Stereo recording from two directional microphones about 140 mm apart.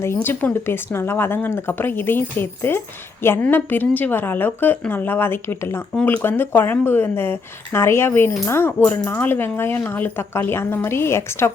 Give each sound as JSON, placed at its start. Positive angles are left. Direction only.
{"t": 0.0, "sound": "speech", "side_deg": 20}